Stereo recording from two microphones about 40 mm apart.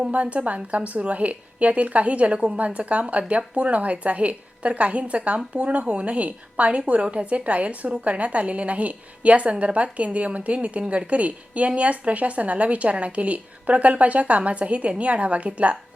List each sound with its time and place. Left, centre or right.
0.1 s a woman's voice: right